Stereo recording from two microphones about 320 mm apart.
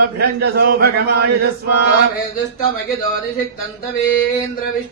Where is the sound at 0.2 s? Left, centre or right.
Right.